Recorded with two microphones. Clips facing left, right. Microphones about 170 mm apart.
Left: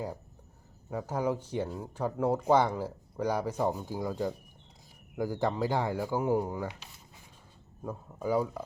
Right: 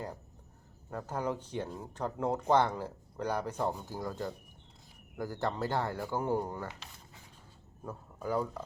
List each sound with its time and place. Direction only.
0.9 s speech: 10° left (ahead or behind)
7.9 s speech: 10° left (ahead or behind)